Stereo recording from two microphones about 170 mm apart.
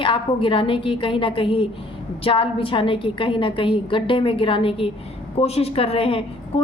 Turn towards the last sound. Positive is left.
turn(degrees=35)  # may be behind; listen again after turning